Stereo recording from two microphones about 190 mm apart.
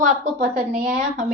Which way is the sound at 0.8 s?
35° right (ahead or behind).